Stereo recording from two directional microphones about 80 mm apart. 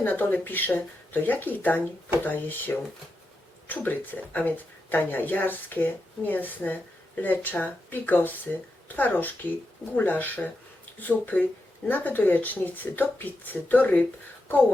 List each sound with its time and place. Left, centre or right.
0.0 s speech: left